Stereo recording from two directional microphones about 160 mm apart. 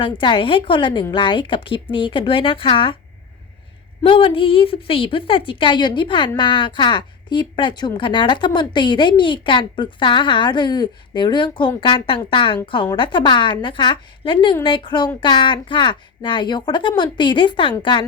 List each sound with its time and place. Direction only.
0.0 s a woman's voice: 30° left (ahead or behind)
4.0 s a woman's voice: 35° left (ahead or behind)